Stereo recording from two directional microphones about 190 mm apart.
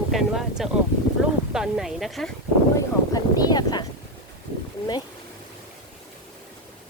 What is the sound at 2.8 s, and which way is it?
Speech, 20° left (ahead or behind).